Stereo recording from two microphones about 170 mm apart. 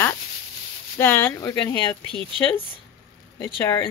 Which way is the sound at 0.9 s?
10° left (ahead or behind).